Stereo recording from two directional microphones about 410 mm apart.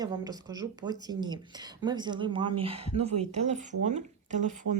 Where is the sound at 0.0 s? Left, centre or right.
Centre.